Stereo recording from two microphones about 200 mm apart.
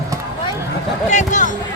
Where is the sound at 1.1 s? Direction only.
40° left (ahead or behind).